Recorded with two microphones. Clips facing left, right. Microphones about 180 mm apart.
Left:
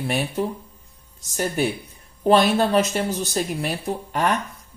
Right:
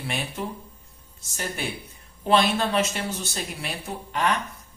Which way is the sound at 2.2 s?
45° left (ahead or behind).